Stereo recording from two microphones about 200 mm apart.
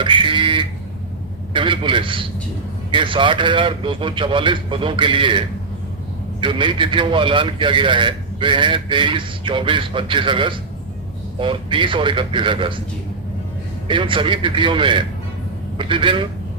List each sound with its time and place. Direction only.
0.0 s a man's voice: 25° right (ahead or behind)
13.8 s a man's voice: 25° right (ahead or behind)